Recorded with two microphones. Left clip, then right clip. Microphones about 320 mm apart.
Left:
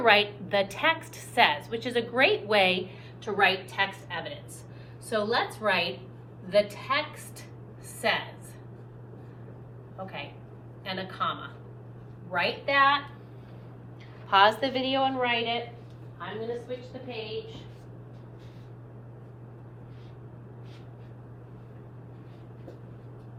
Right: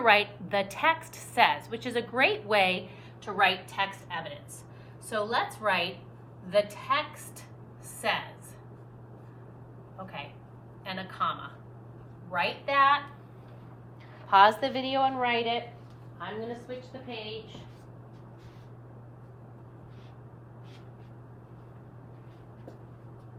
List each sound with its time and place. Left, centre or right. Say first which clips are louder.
0.0 s a woman's voice: left 1 dB; centre
8.0 s a woman's voice: left 2 dB; centre
10.8 s a woman's voice: left 1 dB; centre
14.3 s a woman's voice: right 1 dB; right